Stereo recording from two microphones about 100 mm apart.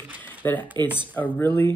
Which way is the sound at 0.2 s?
20° left (ahead or behind).